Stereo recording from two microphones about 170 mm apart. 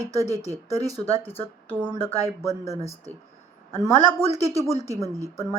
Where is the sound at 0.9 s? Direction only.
35° left (ahead or behind).